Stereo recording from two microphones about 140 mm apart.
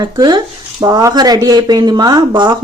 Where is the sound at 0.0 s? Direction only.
30° right (ahead or behind).